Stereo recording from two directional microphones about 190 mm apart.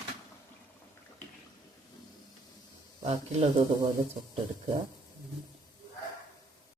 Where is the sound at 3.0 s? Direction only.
35° right (ahead or behind).